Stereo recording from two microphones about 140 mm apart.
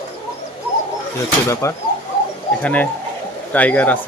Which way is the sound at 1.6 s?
20° left (ahead or behind).